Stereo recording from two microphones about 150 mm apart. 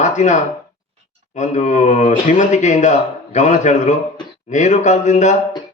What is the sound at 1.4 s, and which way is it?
A man's voice, 50° left (ahead or behind).